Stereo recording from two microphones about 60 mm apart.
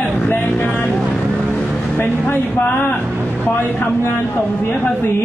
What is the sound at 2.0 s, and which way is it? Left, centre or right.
Speech, left.